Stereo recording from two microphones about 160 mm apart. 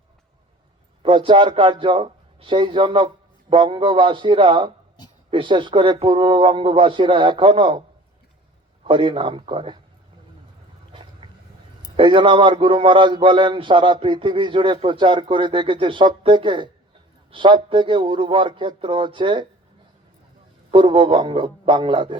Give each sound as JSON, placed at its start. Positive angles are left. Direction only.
{"t": 1.0, "sound": "a man's voice", "side_deg": -30}
{"t": 8.8, "sound": "a man's voice", "side_deg": -30}
{"t": 11.2, "sound": "a sound", "side_deg": -30}
{"t": 11.9, "sound": "a man's voice", "side_deg": -30}
{"t": 20.7, "sound": "a man's voice", "side_deg": -35}